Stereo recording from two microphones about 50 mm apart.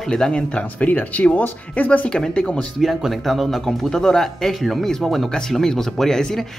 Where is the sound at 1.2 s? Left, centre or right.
Left.